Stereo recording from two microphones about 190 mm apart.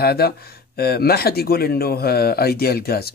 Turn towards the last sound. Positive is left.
turn(degrees=55)  # may be behind; listen again after turning